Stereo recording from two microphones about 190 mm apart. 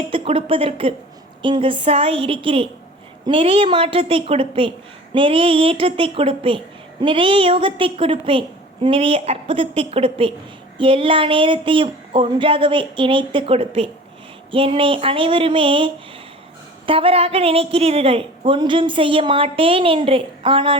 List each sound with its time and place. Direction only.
0.1 s a woman's voice: 30° right (ahead or behind)